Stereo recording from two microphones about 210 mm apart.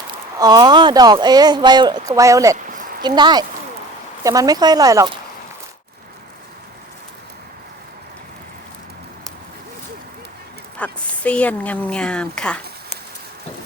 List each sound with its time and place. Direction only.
0.1 s speech: 20° right (ahead or behind)
10.8 s a woman's voice: 5° left (ahead or behind)